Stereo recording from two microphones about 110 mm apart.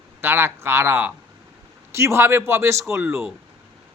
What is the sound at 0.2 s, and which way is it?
Speech, 20° right (ahead or behind).